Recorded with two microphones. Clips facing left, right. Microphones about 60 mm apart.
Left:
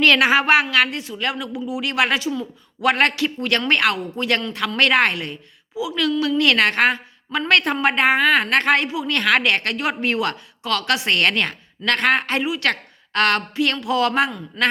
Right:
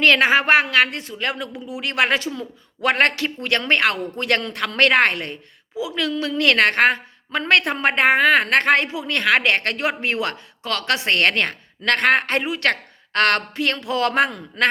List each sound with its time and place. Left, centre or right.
0.0 s a woman's voice: right
2.8 s a woman's voice: right
4.2 s a woman's voice: right
14.3 s a man's voice: right